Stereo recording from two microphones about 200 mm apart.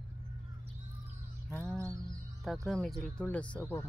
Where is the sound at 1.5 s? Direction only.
5° left (ahead or behind).